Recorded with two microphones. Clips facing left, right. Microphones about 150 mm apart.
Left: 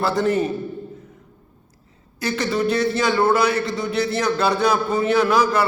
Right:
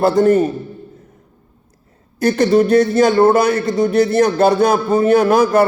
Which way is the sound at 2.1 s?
50° right (ahead or behind).